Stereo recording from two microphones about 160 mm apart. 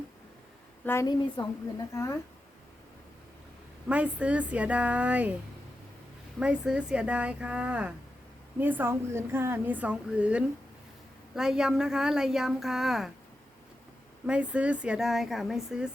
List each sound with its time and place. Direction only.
0.9 s a woman's voice: 15° left (ahead or behind)
3.8 s a woman's voice: 5° right (ahead or behind)
6.4 s a woman's voice: 5° right (ahead or behind)
14.3 s a woman's voice: 5° right (ahead or behind)